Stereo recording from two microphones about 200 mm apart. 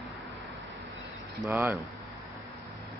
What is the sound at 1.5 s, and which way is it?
Speech, 10° right (ahead or behind).